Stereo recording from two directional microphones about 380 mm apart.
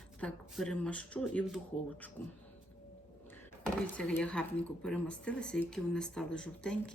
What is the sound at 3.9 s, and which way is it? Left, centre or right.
Speech, centre.